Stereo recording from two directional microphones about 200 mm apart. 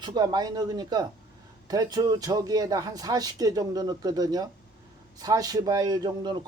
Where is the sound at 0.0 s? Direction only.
20° right (ahead or behind).